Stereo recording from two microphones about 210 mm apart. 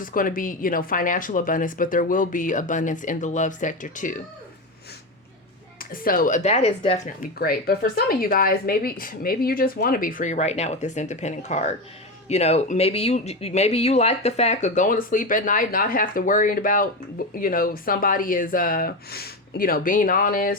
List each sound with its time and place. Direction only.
0.0 s speech: 40° left (ahead or behind)
5.8 s speech: 45° left (ahead or behind)